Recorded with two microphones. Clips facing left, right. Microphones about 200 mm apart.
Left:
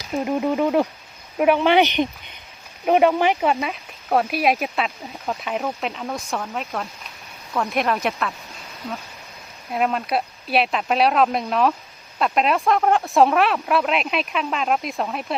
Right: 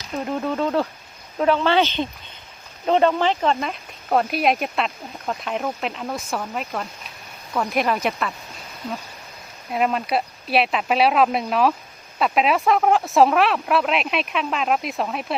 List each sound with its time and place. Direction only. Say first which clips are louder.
0.1 s speech: left 3 dB; 15° left (ahead or behind)
9.7 s speech: even; centre (ahead or behind)